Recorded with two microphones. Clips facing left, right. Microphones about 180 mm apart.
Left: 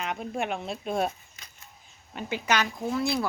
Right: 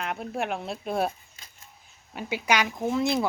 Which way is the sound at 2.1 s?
10° right (ahead or behind).